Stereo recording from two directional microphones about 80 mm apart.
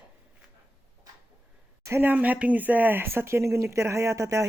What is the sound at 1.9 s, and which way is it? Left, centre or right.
Speech, right.